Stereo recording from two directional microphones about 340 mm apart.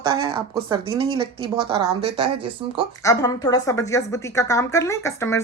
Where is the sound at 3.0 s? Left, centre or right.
Centre.